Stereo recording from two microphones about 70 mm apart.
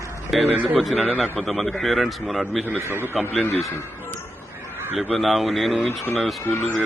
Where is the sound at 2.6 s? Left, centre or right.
Right.